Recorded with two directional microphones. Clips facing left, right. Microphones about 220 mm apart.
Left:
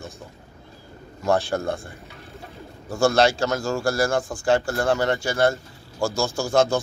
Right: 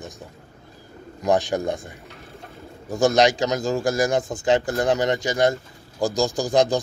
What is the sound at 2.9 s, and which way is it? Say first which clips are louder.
Speech: right 1 dB; 15° right (ahead or behind).